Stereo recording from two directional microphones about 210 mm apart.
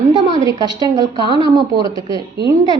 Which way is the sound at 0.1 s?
20° right (ahead or behind).